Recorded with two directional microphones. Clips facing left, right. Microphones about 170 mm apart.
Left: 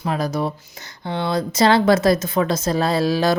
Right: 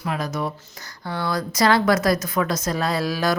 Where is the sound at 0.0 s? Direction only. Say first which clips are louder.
Left 4 dB; 35° left (ahead or behind).